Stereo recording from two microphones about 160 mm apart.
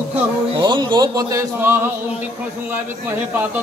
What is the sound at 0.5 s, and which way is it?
Speech, 25° right (ahead or behind).